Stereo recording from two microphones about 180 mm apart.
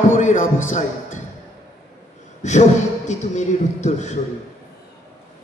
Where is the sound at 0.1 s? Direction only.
45° left (ahead or behind).